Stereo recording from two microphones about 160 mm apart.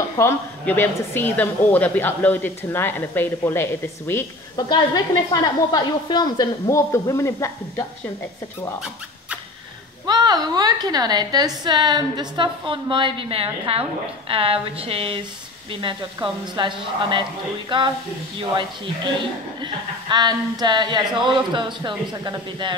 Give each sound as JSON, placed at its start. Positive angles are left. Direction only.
{"t": 0.2, "sound": "a woman's voice", "side_deg": 15}
{"t": 4.6, "sound": "a woman's voice", "side_deg": 25}
{"t": 10.0, "sound": "a woman's voice", "side_deg": -25}
{"t": 19.6, "sound": "a woman's voice", "side_deg": -30}